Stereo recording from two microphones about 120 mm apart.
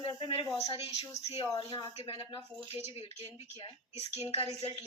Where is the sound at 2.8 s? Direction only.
60° left (ahead or behind).